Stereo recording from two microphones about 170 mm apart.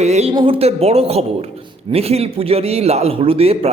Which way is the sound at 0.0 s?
40° right (ahead or behind).